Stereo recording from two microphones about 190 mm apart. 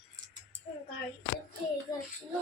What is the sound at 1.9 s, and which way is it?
Speech, 20° left (ahead or behind).